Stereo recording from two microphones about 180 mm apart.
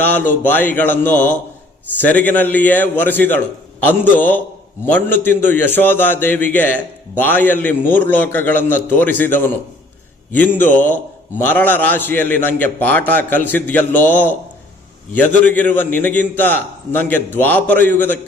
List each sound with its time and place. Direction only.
0.0 s a man's voice: 10° left (ahead or behind)